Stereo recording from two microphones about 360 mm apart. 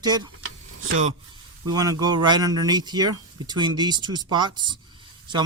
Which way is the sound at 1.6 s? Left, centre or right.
Centre.